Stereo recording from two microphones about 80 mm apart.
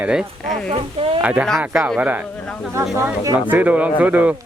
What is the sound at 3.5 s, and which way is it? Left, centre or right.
Speech, right.